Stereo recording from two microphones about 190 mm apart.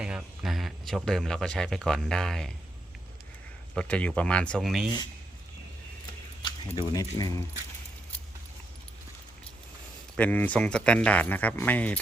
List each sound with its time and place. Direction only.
0.0 s speech: 5° right (ahead or behind)
3.8 s speech: 5° left (ahead or behind)
6.7 s speech: 20° left (ahead or behind)
10.2 s speech: 10° left (ahead or behind)